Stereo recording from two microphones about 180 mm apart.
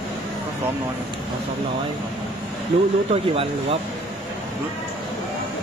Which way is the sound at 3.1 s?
30° right (ahead or behind).